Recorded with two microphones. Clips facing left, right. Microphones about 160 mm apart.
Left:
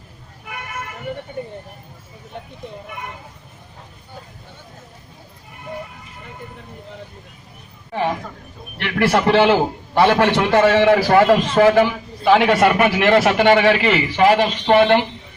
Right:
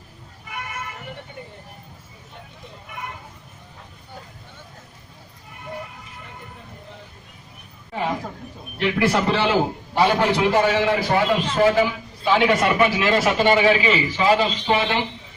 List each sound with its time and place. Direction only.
8.8 s a man's voice: 70° left (ahead or behind)